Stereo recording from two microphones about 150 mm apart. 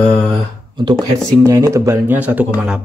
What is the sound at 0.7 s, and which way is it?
Speech, 30° right (ahead or behind).